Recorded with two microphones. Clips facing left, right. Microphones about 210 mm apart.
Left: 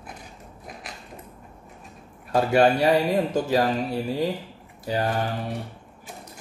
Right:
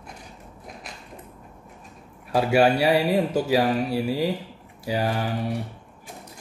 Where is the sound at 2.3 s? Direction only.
5° right (ahead or behind).